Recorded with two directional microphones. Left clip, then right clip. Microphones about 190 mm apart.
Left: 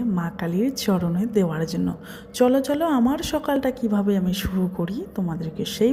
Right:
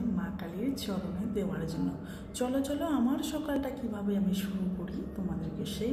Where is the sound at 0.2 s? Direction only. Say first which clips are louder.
Left 12 dB; 55° left (ahead or behind).